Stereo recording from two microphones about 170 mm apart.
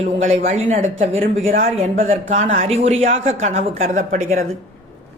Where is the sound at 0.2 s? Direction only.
45° right (ahead or behind).